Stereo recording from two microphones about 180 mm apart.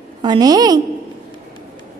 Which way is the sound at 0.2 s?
25° right (ahead or behind).